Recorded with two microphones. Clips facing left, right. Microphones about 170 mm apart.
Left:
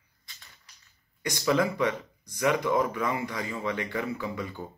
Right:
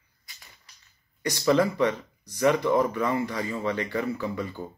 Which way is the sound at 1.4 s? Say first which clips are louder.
Right 3 dB; 10° left (ahead or behind).